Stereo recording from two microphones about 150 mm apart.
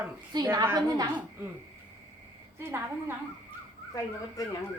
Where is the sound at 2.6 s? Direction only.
15° right (ahead or behind).